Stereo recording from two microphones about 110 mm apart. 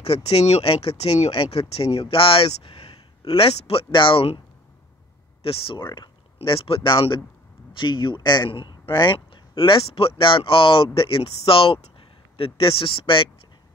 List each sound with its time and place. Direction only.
0.0 s speech: 65° left (ahead or behind)
5.4 s speech: 60° left (ahead or behind)